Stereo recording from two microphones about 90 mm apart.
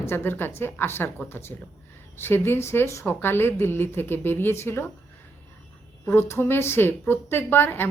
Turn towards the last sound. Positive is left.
turn(degrees=25)  # may be behind; listen again after turning